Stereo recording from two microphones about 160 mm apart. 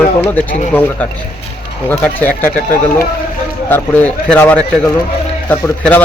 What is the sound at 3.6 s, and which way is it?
A man's voice, 10° left (ahead or behind).